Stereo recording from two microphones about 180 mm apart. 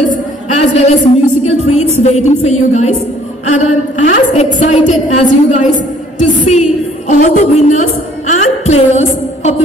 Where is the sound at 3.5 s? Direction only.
45° left (ahead or behind).